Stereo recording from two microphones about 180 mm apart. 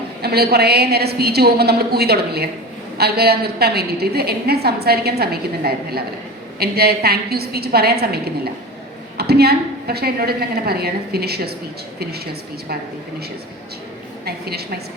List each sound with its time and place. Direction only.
0.2 s a woman's voice: 60° right (ahead or behind)
14.3 s a woman's voice: 60° right (ahead or behind)